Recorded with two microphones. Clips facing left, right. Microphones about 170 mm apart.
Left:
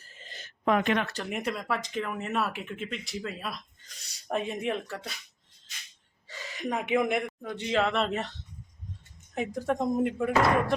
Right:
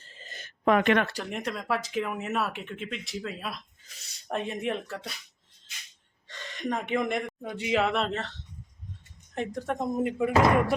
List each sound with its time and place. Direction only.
0.0 s a sound: 30° right (ahead or behind)
0.3 s gasp: 50° right (ahead or behind); by 1.0 s 65° right (ahead or behind)
1.2 s speech: 5° left (ahead or behind)
6.2 s gasp: 5° left (ahead or behind)
7.4 s speech: 10° right (ahead or behind)
8.1 s speech: 15° left (ahead or behind); by 10.8 s 5° right (ahead or behind)